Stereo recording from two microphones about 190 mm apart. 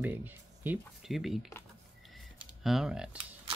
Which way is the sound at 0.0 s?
10° right (ahead or behind).